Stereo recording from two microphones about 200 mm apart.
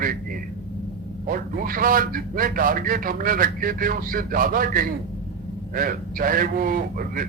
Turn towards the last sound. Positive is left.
turn(degrees=-45)  # may be behind; listen again after turning